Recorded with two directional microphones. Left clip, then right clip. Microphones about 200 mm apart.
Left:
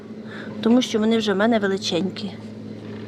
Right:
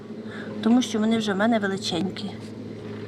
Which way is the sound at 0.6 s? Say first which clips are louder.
Left 4 dB; 45° left (ahead or behind).